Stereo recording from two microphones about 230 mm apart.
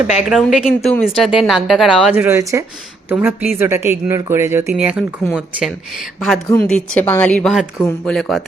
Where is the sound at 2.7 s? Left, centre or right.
Centre.